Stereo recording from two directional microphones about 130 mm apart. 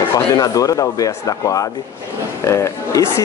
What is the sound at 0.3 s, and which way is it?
Speech, 25° left (ahead or behind).